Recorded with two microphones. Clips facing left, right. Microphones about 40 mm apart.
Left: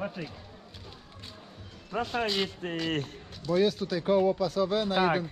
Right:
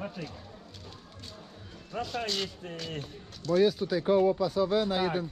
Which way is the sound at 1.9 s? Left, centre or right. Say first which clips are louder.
Left 4 dB; centre.